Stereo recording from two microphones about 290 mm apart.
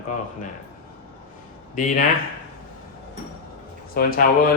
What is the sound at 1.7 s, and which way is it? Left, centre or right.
Speech, left.